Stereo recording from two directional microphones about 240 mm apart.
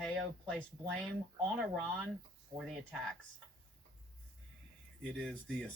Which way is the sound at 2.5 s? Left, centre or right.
Centre.